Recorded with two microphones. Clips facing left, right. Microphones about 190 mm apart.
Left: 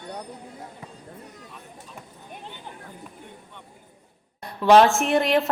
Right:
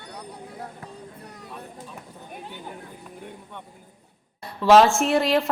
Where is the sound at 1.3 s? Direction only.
65° right (ahead or behind).